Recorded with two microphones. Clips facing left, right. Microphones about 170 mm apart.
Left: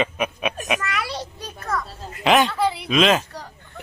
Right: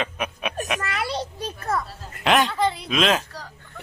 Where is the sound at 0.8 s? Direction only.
30° right (ahead or behind).